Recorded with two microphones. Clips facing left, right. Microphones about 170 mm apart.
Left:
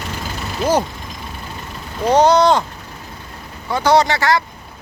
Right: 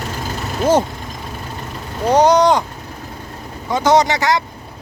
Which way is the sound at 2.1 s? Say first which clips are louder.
Even; 15° right (ahead or behind).